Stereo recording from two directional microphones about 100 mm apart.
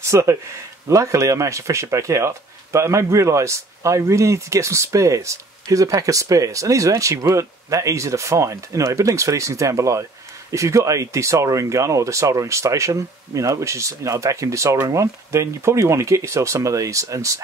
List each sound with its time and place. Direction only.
0.0 s speech: 30° right (ahead or behind)